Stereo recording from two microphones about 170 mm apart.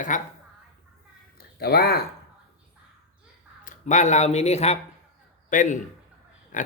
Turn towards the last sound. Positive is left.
turn(degrees=50)  # may be behind; listen again after turning